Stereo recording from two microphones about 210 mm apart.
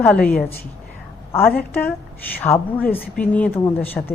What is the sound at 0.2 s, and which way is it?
Speech, 45° left (ahead or behind).